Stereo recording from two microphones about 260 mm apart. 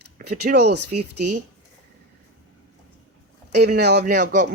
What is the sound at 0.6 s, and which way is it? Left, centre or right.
Speech, right.